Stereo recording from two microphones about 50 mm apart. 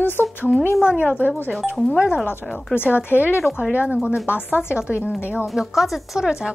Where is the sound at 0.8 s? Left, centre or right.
Right.